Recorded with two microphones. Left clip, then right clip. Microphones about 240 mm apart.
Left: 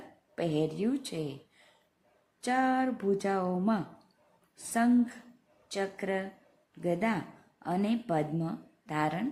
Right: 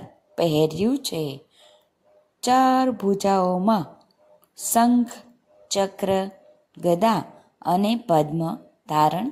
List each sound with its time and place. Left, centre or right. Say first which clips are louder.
0.3 s a woman's voice: right 11 dB; centre
2.4 s a woman's voice: right 11 dB; centre